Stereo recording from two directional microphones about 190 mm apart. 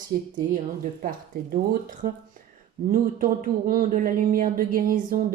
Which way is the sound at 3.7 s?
45° right (ahead or behind).